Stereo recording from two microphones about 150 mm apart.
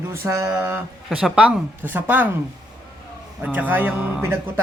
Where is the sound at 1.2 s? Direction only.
5° right (ahead or behind).